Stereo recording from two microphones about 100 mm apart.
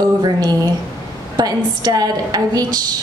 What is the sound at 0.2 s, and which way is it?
A woman's voice, 45° right (ahead or behind).